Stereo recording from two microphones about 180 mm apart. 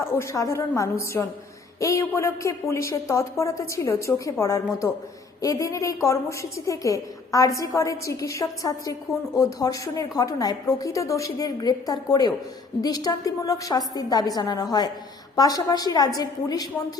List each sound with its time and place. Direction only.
0.0 s a woman's voice: 15° left (ahead or behind)